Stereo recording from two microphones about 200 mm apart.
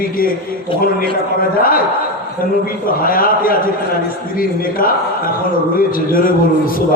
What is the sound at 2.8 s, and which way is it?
A man's voice, 45° left (ahead or behind).